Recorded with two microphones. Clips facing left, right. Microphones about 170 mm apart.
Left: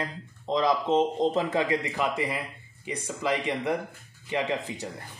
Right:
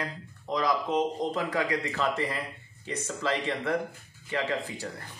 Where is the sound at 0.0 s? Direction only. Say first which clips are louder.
Left 2 dB; 25° left (ahead or behind).